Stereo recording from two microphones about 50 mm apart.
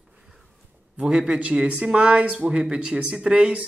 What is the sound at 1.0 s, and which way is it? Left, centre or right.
Speech, right.